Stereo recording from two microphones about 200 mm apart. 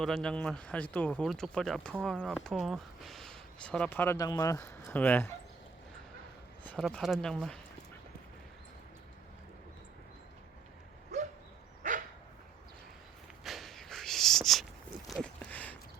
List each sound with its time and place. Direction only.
0.0 s speech: centre (ahead or behind)
6.7 s speech: 5° left (ahead or behind)
11.1 s dog: 35° right (ahead or behind)
13.4 s a sound: centre (ahead or behind)